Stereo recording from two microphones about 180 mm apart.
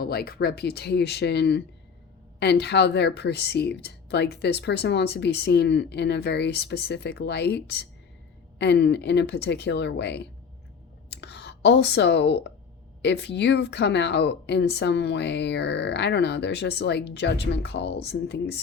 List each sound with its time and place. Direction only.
0.0 s speech: 60° left (ahead or behind)